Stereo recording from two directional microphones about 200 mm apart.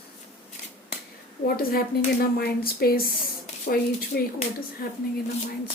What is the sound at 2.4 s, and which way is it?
A woman's voice, 50° left (ahead or behind).